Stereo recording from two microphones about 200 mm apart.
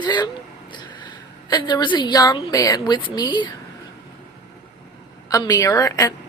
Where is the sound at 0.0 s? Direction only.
20° left (ahead or behind).